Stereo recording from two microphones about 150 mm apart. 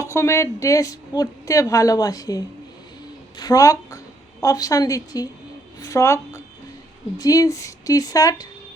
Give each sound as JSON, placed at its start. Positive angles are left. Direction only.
{"t": 0.0, "sound": "a woman's voice", "side_deg": 20}